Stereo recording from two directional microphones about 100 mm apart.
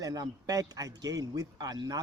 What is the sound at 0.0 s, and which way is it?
Speech, 35° right (ahead or behind).